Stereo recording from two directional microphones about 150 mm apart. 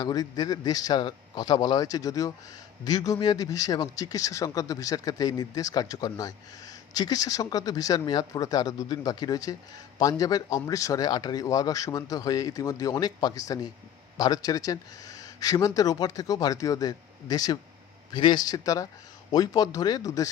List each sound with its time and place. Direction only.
0.0 s speech: 25° left (ahead or behind)